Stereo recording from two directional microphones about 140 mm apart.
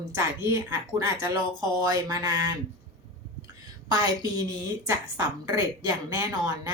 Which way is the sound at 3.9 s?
30° right (ahead or behind).